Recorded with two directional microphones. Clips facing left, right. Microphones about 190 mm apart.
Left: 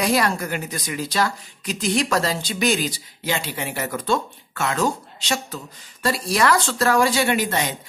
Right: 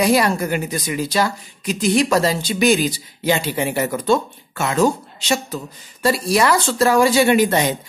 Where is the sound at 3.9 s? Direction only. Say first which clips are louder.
Right 2 dB; 10° right (ahead or behind).